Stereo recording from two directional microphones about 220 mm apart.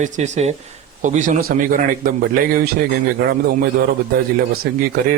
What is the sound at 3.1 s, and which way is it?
Speech, 45° right (ahead or behind).